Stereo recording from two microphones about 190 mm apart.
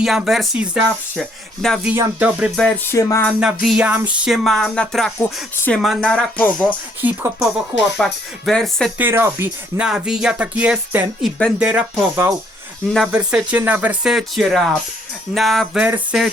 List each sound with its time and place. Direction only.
0.0 s music: centre (ahead or behind)
2.1 s speech: 5° right (ahead or behind)
2.9 s a sound: 15° left (ahead or behind)
3.2 s music: centre (ahead or behind)
7.0 s speech: 10° right (ahead or behind)
7.9 s music: centre (ahead or behind)
9.0 s speech: 10° right (ahead or behind)
12.9 s music: 5° right (ahead or behind)